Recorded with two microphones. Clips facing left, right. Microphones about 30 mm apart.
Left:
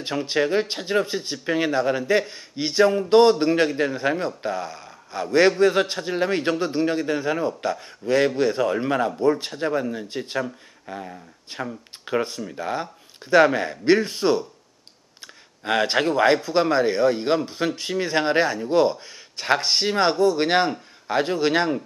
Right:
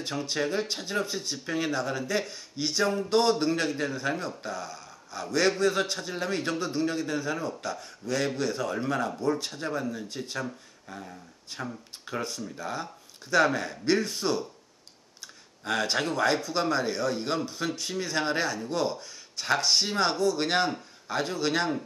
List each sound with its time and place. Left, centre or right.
0.0 s a man's voice: left
15.6 s speech: left